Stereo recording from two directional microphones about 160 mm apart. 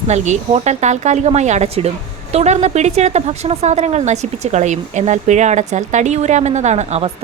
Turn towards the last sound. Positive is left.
turn(degrees=-45)  # may be behind; listen again after turning